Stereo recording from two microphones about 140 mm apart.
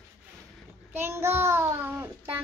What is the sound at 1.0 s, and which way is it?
A child's voice, 15° right (ahead or behind).